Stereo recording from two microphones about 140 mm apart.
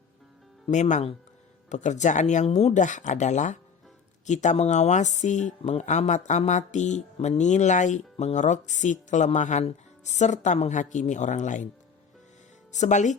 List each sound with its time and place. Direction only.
0.7 s speech: 60° left (ahead or behind)
12.7 s speech: 60° left (ahead or behind)